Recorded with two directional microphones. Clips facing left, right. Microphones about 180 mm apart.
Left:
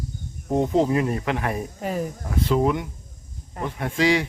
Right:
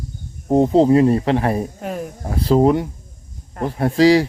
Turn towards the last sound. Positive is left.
turn(degrees=-35)  # may be behind; listen again after turning